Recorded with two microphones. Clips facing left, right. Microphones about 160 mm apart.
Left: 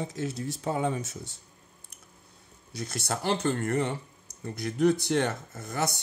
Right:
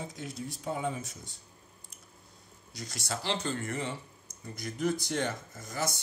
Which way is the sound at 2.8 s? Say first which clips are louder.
Left 5 dB; 60° left (ahead or behind).